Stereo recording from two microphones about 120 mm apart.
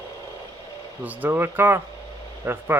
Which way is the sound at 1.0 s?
15° right (ahead or behind).